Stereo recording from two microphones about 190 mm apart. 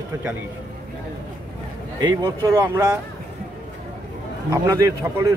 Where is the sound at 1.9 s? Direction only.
20° right (ahead or behind).